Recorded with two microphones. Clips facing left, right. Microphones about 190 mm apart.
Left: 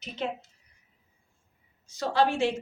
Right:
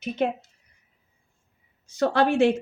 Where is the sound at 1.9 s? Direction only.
60° right (ahead or behind).